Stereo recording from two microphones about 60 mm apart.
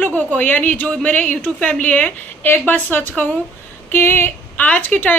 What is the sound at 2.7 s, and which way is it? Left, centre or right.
Speech, left.